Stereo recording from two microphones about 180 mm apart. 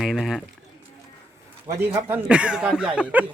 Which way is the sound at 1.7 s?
15° right (ahead or behind).